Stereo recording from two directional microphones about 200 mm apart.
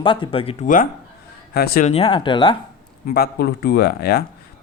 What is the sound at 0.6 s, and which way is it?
Speech, 40° left (ahead or behind).